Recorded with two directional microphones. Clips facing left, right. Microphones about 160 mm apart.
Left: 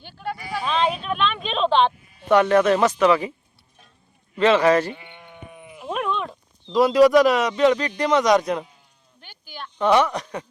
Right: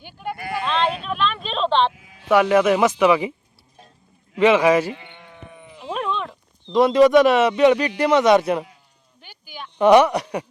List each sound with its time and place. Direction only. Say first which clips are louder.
0.0 s speech: even; 15° right (ahead or behind)
0.6 s a sound: even; 5° left (ahead or behind)
1.9 s sheep: left 1 dB; 90° right
2.3 s speech: right 1 dB; 10° right (ahead or behind)
4.4 s speech: right 1 dB; 15° right (ahead or behind)
4.9 s sheep: even; 5° left (ahead or behind)
6.7 s a man's voice: right 1 dB; centre (ahead or behind)